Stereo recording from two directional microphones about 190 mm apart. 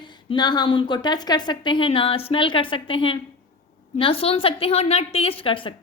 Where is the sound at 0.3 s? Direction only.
20° left (ahead or behind).